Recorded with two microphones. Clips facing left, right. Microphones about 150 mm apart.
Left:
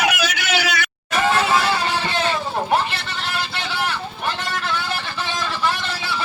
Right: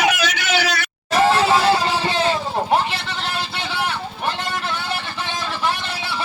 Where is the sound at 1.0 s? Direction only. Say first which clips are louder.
Right 3 dB; 35° right (ahead or behind).